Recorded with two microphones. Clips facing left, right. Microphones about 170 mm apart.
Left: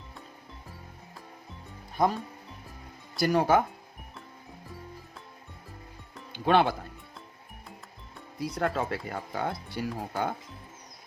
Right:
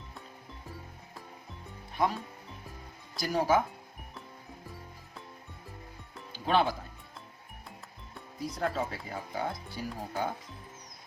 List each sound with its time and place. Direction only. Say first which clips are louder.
3.2 s speech: left 4 dB; 60° left (ahead or behind)
6.3 s speech: left 4 dB; 65° left (ahead or behind)
8.4 s speech: left 3 dB; 70° left (ahead or behind)